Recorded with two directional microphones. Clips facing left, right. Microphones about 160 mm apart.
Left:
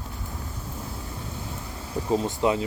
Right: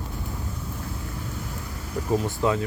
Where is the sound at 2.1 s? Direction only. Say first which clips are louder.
Even; 20° left (ahead or behind).